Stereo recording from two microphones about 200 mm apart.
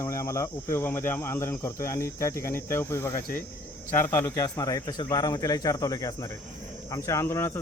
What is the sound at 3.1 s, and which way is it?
Speech, 45° left (ahead or behind).